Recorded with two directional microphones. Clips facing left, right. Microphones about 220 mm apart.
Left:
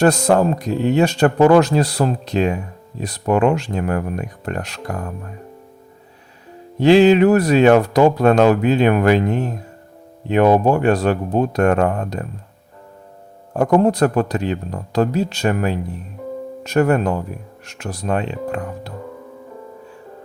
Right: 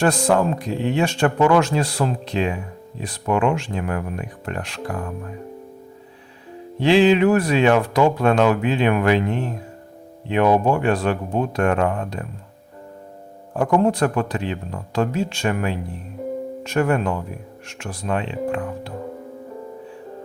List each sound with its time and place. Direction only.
0.0 s speech: 40° left (ahead or behind)
6.7 s speech: 40° left (ahead or behind)
13.6 s speech: 40° left (ahead or behind)